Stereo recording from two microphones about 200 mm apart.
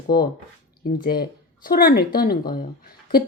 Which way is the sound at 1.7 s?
50° left (ahead or behind).